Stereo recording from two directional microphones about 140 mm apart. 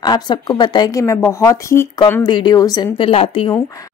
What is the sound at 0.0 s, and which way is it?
A woman's voice, 30° left (ahead or behind).